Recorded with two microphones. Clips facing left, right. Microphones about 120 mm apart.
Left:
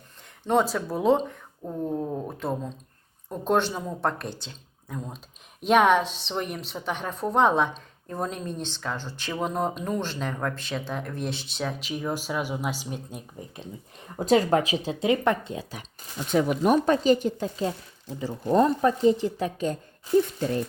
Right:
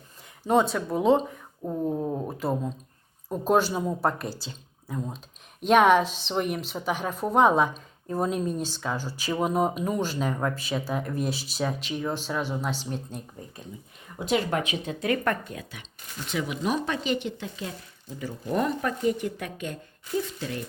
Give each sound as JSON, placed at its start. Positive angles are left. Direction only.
{"t": 0.4, "sound": "a woman's voice", "side_deg": 0}
{"t": 14.2, "sound": "speech", "side_deg": 35}
{"t": 16.3, "sound": "speech", "side_deg": 45}